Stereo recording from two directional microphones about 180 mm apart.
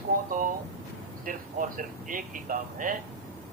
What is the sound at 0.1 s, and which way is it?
A man's voice, 50° right (ahead or behind).